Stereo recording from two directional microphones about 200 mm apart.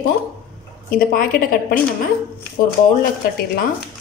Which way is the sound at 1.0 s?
45° left (ahead or behind).